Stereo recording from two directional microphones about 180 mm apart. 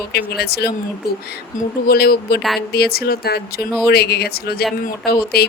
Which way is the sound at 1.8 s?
60° left (ahead or behind).